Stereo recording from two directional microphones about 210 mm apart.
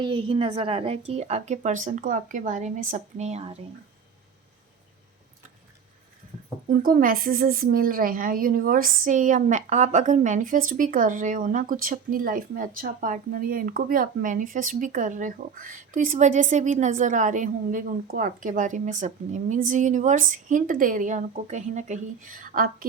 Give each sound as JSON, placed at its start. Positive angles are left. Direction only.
{"t": 0.0, "sound": "a woman's voice", "side_deg": -25}
{"t": 6.7, "sound": "a woman's voice", "side_deg": -45}